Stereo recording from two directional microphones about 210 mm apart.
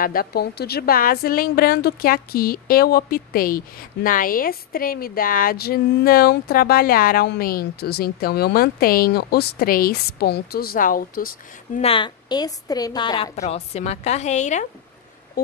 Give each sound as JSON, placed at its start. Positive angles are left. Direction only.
{"t": 0.0, "sound": "a woman's voice", "side_deg": 45}
{"t": 11.8, "sound": "a woman's voice", "side_deg": 25}